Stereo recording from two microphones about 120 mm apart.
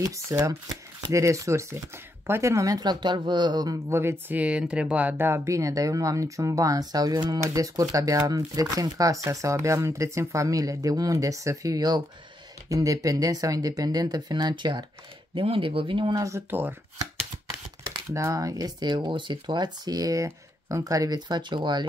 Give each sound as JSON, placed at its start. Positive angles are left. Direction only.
{"t": 0.0, "sound": "speech", "side_deg": -30}
{"t": 16.2, "sound": "speech", "side_deg": -20}
{"t": 18.1, "sound": "speech", "side_deg": -25}